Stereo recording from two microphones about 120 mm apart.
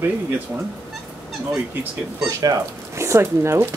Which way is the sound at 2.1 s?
30° right (ahead or behind).